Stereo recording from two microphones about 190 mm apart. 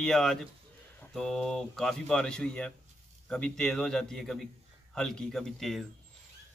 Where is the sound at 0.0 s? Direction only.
Centre (ahead or behind).